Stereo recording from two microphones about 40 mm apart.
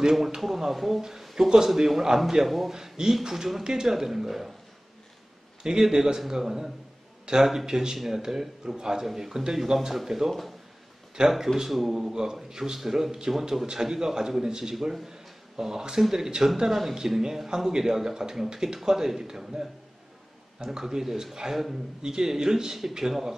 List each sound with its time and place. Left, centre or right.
0.1 s speech: centre
1.2 s a sound: centre
1.7 s speech: centre
2.7 s a man's voice: centre
5.6 s a man's voice: centre